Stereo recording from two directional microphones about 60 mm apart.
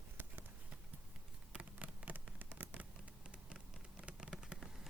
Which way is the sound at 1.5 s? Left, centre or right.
Right.